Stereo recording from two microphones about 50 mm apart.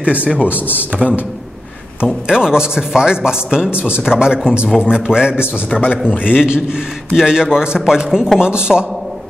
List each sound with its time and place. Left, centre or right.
0.0 s speech: right
0.9 s speech: centre
2.2 s a man's voice: centre
5.8 s a man's voice: left
6.3 s a man's voice: centre